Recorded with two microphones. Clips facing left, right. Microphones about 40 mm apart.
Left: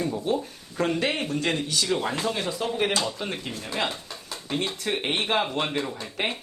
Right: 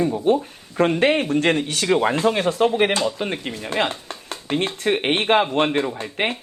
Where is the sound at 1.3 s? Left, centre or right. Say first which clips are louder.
Right 7 dB; right.